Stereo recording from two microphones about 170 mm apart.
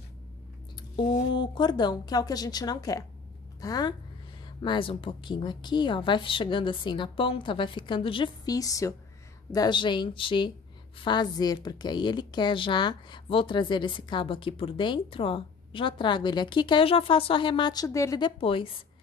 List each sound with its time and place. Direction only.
1.3 s a woman's voice: 30° left (ahead or behind)